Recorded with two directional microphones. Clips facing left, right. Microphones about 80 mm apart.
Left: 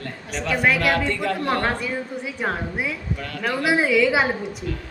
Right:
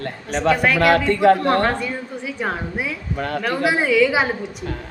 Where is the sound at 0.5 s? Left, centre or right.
Centre.